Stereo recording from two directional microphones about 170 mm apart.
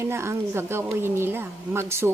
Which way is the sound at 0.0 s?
15° right (ahead or behind).